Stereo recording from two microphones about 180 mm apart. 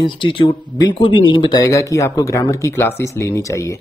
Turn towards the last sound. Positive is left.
turn(degrees=15)  # may be behind; listen again after turning